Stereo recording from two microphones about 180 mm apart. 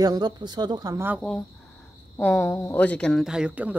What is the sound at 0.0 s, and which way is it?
Speech, 20° right (ahead or behind).